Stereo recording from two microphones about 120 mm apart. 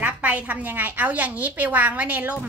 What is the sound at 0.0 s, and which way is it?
A woman's voice, 10° right (ahead or behind).